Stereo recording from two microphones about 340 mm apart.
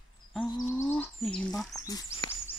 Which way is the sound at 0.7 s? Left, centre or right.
Centre.